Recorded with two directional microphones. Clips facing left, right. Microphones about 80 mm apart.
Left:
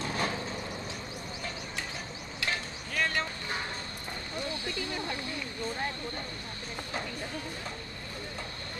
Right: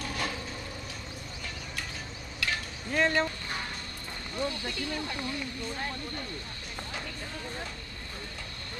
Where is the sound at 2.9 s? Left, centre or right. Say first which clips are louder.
Right 5 dB; right.